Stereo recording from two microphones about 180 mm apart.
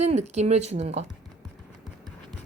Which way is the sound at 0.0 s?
40° right (ahead or behind).